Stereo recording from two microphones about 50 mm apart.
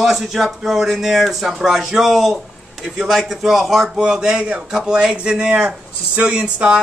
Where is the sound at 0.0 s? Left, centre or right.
Centre; by 6.8 s right.